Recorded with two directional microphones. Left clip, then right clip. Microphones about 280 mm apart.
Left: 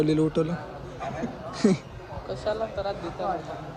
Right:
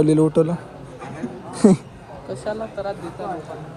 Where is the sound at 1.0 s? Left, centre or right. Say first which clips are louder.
Left 1 dB; left.